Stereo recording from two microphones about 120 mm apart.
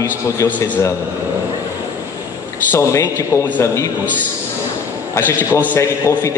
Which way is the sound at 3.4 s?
15° left (ahead or behind).